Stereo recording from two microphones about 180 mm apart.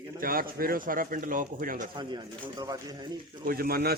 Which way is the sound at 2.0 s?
25° right (ahead or behind).